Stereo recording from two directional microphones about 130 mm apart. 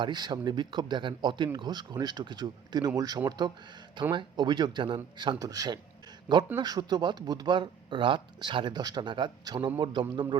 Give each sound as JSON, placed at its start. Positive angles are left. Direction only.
{"t": 0.0, "sound": "speech", "side_deg": -35}